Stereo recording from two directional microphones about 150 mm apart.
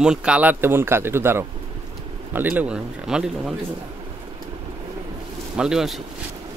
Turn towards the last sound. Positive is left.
turn(degrees=0)  # may be behind; listen again after turning